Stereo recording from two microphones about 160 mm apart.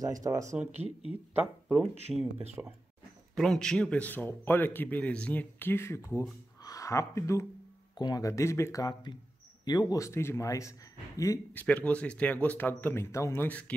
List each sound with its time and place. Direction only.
0.0 s speech: 20° right (ahead or behind)
3.3 s a man's voice: 5° left (ahead or behind); by 11.6 s 20° left (ahead or behind)
11.6 s a man's voice: 10° left (ahead or behind)